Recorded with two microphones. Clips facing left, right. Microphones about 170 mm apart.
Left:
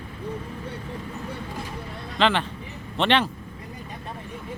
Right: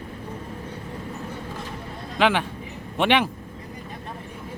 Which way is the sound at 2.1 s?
10° right (ahead or behind).